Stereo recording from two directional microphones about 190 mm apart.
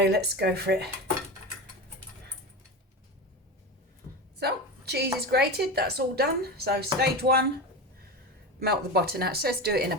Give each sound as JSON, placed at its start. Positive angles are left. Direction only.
{"t": 0.0, "sound": "a woman's voice", "side_deg": -60}
{"t": 4.4, "sound": "a sound", "side_deg": -60}
{"t": 5.2, "sound": "a woman's voice", "side_deg": -60}
{"t": 8.5, "sound": "a woman's voice", "side_deg": -55}